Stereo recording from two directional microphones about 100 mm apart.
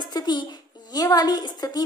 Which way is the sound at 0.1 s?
45° left (ahead or behind).